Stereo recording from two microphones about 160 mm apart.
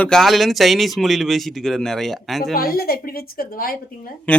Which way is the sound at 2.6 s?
70° left (ahead or behind).